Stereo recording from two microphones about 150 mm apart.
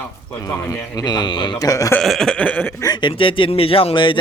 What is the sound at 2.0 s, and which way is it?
Speech, centre (ahead or behind).